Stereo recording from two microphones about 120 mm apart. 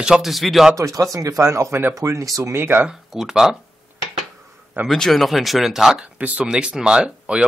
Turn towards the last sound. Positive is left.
turn(degrees=-5)  # may be behind; listen again after turning